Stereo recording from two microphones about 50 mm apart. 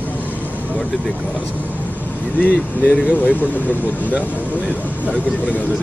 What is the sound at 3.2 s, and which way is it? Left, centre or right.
Speech, left.